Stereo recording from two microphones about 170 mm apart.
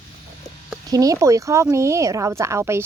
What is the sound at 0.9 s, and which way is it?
Speech, 20° right (ahead or behind).